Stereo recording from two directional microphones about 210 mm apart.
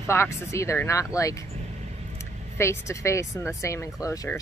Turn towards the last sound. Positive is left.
turn(degrees=15)  # may be behind; listen again after turning